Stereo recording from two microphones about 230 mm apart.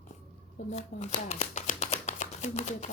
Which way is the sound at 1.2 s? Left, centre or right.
Left.